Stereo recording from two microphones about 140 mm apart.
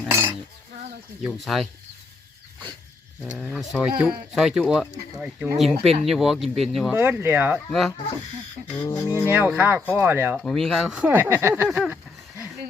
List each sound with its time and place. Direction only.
1.2 s speech: centre (ahead or behind)
3.2 s speech: 5° right (ahead or behind)
6.9 s speech: 15° right (ahead or behind)
7.7 s speech: centre (ahead or behind)
8.8 s speech: 20° left (ahead or behind)
9.2 s speech: 15° right (ahead or behind)
10.3 s speech: 5° left (ahead or behind); by 11.8 s 15° right (ahead or behind)